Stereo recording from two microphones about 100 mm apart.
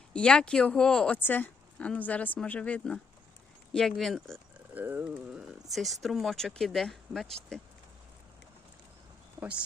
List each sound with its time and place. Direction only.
0.1 s speech: 10° left (ahead or behind)
4.7 s a sound: 20° right (ahead or behind)
5.2 s speech: 5° right (ahead or behind)
9.4 s speech: 10° right (ahead or behind)